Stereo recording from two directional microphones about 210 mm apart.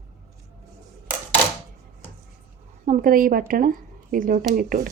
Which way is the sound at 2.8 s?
40° right (ahead or behind).